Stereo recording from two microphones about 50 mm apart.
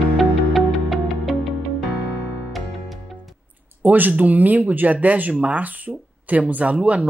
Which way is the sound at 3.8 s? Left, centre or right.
Right.